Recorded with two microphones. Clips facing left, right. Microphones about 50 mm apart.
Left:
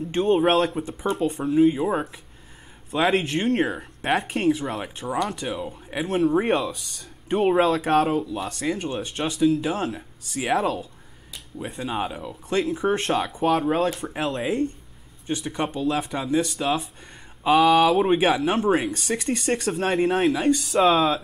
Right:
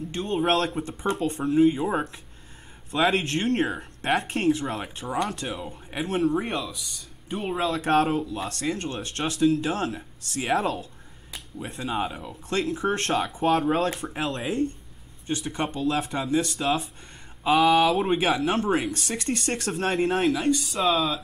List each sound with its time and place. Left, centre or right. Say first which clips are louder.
0.2 s speech: left 5 dB; centre
6.7 s speech: left 2 dB; left
7.4 s speech: left 7 dB; left
7.7 s speech: left 2 dB; centre
20.9 s speech: left 4 dB; left